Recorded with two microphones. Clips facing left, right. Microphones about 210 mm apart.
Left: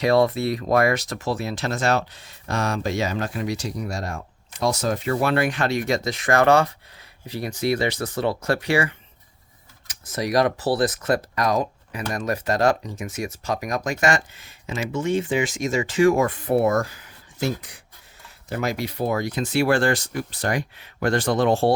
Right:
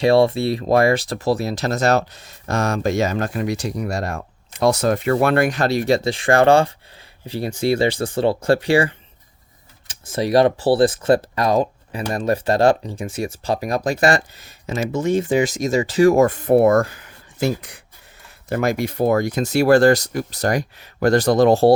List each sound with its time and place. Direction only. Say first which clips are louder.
0.0 s speech: right 4 dB; 30° right (ahead or behind)